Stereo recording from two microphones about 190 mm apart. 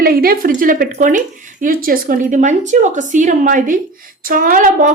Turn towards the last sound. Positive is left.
turn(degrees=-45)  # may be behind; listen again after turning